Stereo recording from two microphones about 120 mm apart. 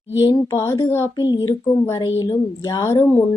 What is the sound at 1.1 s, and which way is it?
Speech, 35° left (ahead or behind).